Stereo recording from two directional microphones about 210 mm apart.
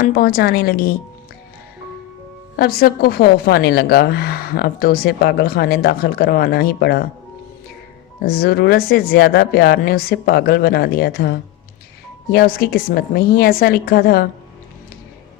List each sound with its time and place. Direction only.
0.0 s a woman's voice: 45° left (ahead or behind)
2.6 s a woman's voice: 45° left (ahead or behind)
8.2 s a woman's voice: 45° left (ahead or behind)